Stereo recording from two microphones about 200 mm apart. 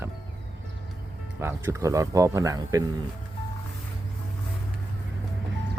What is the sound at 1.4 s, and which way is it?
Speech, 10° right (ahead or behind).